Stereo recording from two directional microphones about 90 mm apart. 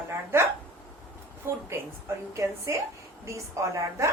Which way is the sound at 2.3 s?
35° right (ahead or behind).